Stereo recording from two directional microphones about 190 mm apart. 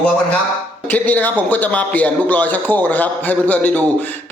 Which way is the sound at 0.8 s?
10° left (ahead or behind).